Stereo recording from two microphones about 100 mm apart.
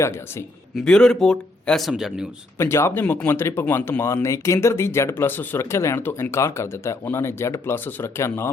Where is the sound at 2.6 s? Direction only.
25° left (ahead or behind).